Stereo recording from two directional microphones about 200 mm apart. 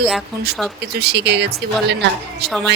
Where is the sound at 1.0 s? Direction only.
55° right (ahead or behind).